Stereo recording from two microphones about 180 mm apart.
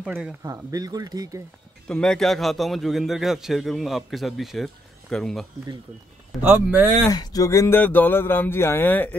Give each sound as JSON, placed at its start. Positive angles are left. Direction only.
{"t": 0.0, "sound": "a man's voice", "side_deg": -5}
{"t": 0.4, "sound": "speech", "side_deg": -20}
{"t": 1.9, "sound": "a man's voice", "side_deg": 5}
{"t": 6.4, "sound": "speech", "side_deg": -10}
{"t": 7.1, "sound": "speech", "side_deg": 20}